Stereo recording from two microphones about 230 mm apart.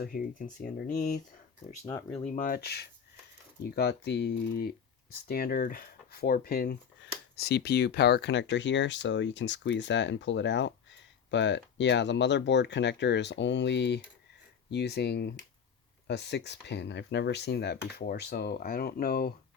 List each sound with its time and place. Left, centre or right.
0.0 s speech: left
1.8 s speech: centre
2.1 s speech: left